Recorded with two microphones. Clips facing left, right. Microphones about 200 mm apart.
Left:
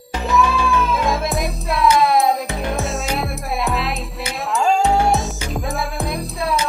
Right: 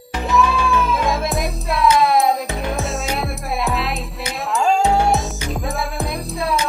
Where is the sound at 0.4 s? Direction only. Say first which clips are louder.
Even; centre (ahead or behind).